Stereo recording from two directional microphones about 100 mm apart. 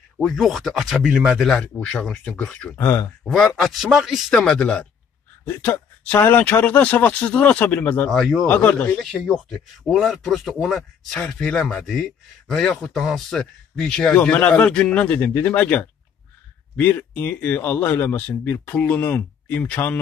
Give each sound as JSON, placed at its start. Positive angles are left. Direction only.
{"t": 0.2, "sound": "speech", "side_deg": 0}
{"t": 1.5, "sound": "speech", "side_deg": 10}
{"t": 2.8, "sound": "speech", "side_deg": 30}
{"t": 3.3, "sound": "speech", "side_deg": 5}
{"t": 4.3, "sound": "speech", "side_deg": 5}
{"t": 8.1, "sound": "speech", "side_deg": 0}
{"t": 8.5, "sound": "speech", "side_deg": 15}
{"t": 9.3, "sound": "speech", "side_deg": 5}